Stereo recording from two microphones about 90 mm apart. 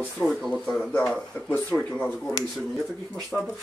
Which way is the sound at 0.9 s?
20° left (ahead or behind).